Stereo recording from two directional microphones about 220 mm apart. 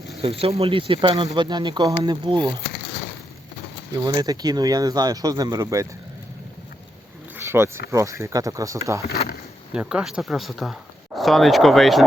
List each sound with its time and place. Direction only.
0.2 s speech: 25° right (ahead or behind)
3.9 s speech: 20° right (ahead or behind)
7.3 s speech: 10° right (ahead or behind)
9.0 s speech: 45° left (ahead or behind)
9.7 s speech: 5° right (ahead or behind)